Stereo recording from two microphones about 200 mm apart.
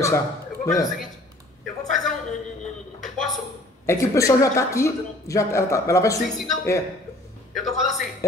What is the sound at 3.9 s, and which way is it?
Speech, 15° left (ahead or behind).